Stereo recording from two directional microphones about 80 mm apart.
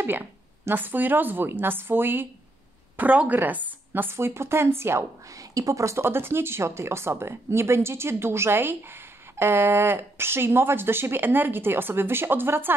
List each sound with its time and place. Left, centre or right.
0.0 s speech: right
5.4 s speech: right